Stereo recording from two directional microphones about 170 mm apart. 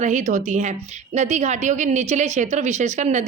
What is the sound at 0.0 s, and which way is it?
A woman's voice, 45° right (ahead or behind).